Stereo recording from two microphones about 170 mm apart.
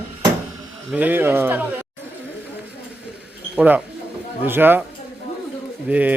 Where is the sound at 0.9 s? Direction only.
10° right (ahead or behind).